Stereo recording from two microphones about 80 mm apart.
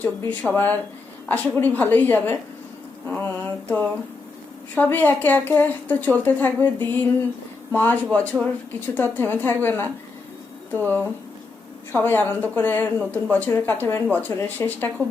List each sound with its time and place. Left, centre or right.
0.0 s a woman's voice: centre